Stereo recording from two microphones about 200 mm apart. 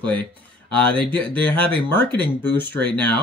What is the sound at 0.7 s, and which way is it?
Speech, 10° left (ahead or behind).